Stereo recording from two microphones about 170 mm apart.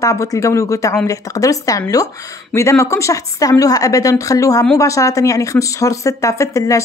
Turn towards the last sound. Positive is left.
turn(degrees=20)  # may be behind; listen again after turning